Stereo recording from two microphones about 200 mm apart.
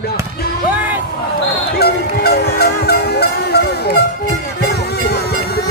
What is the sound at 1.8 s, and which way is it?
Music, 50° left (ahead or behind).